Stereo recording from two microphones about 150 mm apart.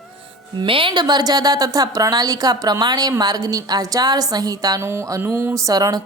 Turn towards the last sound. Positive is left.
turn(degrees=-25)  # may be behind; listen again after turning